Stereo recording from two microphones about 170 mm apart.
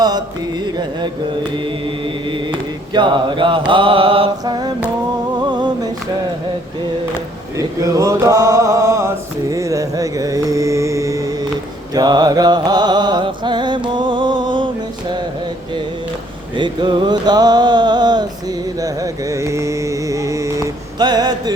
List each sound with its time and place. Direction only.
0.0 s mantra: 25° right (ahead or behind)
1.5 s chant: 30° right (ahead or behind)
3.7 s mantra: 30° right (ahead or behind)
5.4 s a sound: 25° right (ahead or behind)
7.5 s mantra: 20° right (ahead or behind)
11.9 s music: 25° right (ahead or behind)
16.6 s a sound: 25° right (ahead or behind)